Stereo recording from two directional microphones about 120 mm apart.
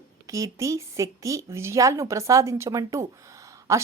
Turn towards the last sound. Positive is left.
turn(degrees=-25)  # may be behind; listen again after turning